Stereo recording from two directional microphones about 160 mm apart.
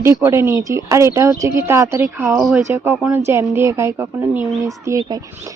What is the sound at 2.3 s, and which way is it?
Speech, centre (ahead or behind).